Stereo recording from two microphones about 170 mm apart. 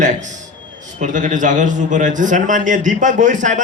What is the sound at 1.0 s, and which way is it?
A man's voice, 50° right (ahead or behind).